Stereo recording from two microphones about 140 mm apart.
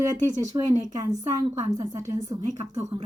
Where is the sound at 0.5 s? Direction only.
25° right (ahead or behind).